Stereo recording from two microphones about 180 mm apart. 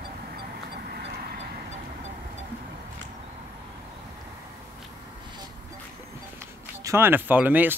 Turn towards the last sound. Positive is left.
turn(degrees=-10)  # may be behind; listen again after turning